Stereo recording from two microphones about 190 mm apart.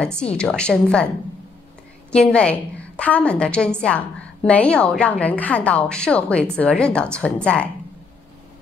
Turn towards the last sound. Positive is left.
turn(degrees=5)  # may be behind; listen again after turning